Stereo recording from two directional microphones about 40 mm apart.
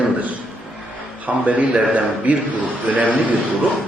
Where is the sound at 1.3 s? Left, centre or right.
Right.